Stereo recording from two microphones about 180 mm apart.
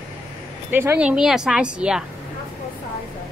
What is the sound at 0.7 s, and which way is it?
Speech, 10° right (ahead or behind).